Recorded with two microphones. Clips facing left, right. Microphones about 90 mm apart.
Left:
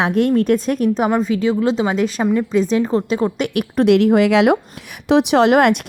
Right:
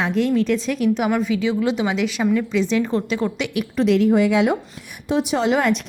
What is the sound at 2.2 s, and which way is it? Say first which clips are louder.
Speech: left 1 dB; 20° left (ahead or behind).